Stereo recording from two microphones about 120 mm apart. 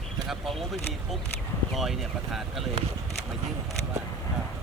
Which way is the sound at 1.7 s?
Centre (ahead or behind).